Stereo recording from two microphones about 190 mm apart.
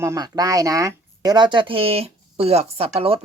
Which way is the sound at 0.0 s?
20° right (ahead or behind).